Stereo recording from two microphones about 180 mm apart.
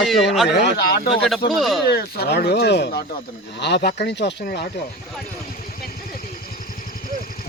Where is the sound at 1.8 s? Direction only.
60° left (ahead or behind).